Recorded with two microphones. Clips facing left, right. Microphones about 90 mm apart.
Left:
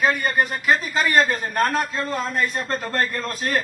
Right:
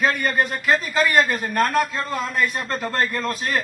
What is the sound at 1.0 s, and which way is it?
Speech, 25° left (ahead or behind).